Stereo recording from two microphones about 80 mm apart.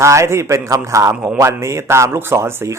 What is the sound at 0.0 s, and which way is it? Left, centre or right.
Speech, right.